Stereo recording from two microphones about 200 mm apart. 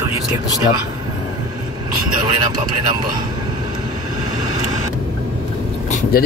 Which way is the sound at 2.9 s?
20° right (ahead or behind).